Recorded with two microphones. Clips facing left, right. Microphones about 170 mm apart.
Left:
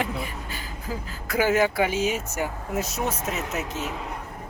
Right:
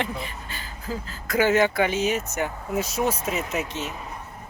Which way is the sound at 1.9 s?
65° right (ahead or behind).